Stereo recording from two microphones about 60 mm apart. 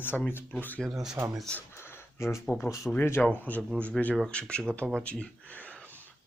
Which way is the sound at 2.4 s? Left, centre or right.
Left.